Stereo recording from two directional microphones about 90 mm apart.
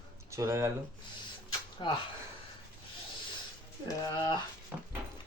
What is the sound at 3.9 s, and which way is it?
Speech, 45° left (ahead or behind).